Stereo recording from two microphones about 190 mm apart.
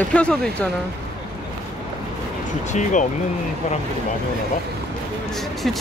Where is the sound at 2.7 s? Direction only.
40° left (ahead or behind).